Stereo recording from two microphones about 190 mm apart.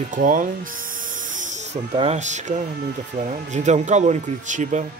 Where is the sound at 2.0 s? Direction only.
40° right (ahead or behind).